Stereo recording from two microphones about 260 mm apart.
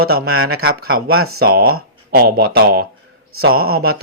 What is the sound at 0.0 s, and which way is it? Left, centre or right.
Speech, right.